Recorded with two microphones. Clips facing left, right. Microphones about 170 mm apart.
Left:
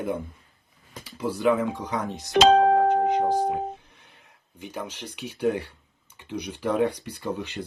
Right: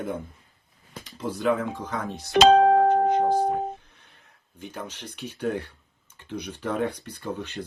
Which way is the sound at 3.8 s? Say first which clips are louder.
Left 2 dB; 15° left (ahead or behind).